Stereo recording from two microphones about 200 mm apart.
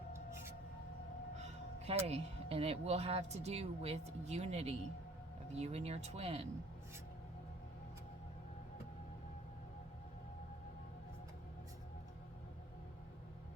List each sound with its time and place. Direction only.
1.4 s speech: 30° right (ahead or behind)